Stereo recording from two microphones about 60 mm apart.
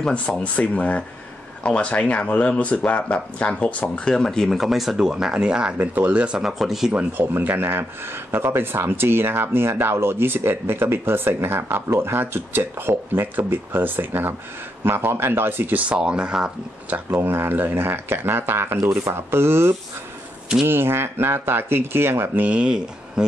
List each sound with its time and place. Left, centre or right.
0.1 s speech: left
4.1 s speech: centre
4.5 s speech: centre
5.8 s speech: right
6.4 s speech: centre
6.9 s speech: right
15.9 s speech: centre
16.9 s speech: right
18.8 s speech: right
22.5 s speech: centre